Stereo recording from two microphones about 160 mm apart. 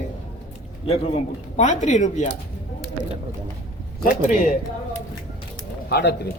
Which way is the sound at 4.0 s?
60° left (ahead or behind).